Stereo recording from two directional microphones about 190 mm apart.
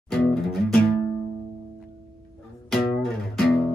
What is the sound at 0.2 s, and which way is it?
Music, centre (ahead or behind).